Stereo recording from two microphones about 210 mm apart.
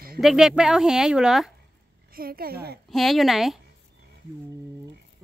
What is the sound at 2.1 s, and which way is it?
Speech, 45° right (ahead or behind).